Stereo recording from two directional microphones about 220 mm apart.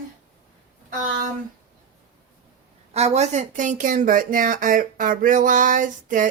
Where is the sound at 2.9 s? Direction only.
30° right (ahead or behind).